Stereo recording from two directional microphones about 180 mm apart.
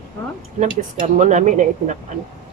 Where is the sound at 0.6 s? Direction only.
40° right (ahead or behind).